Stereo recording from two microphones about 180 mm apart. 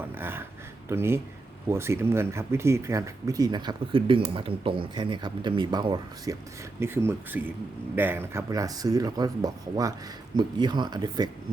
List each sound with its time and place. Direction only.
0.0 s a sound: 10° right (ahead or behind)
0.9 s speech: 15° right (ahead or behind)
6.7 s speech: 15° right (ahead or behind)